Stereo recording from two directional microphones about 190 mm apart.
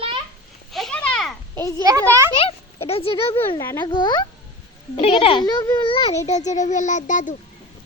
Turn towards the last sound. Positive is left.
turn(degrees=40)  # may be behind; listen again after turning